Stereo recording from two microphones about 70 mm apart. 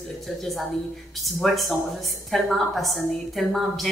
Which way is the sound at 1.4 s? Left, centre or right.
Centre.